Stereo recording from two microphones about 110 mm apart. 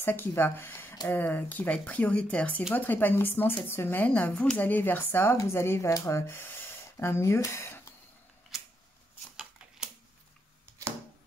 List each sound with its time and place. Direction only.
0.0 s speech: 20° left (ahead or behind)